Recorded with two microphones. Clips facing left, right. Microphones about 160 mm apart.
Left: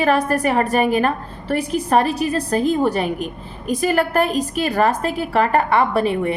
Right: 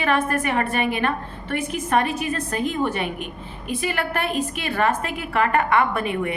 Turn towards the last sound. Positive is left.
turn(degrees=35)  # may be behind; listen again after turning